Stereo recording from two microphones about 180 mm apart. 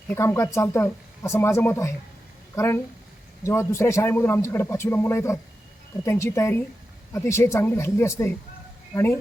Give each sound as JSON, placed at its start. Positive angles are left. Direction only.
{"t": 0.1, "sound": "a man's voice", "side_deg": 15}